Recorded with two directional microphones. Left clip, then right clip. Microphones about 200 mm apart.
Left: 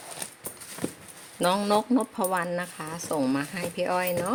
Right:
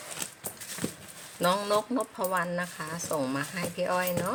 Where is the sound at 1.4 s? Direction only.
25° left (ahead or behind).